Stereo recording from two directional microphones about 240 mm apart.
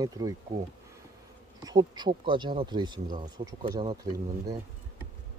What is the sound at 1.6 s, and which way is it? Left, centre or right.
Speech, centre.